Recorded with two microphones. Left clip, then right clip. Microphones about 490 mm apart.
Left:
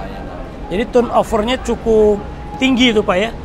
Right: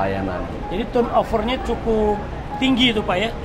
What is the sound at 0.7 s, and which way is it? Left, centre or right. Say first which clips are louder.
Speech: left 5 dB; left.